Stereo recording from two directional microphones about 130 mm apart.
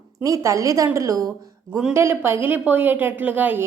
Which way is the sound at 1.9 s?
20° right (ahead or behind).